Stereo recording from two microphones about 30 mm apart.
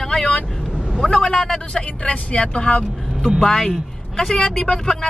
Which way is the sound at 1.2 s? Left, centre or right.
Left.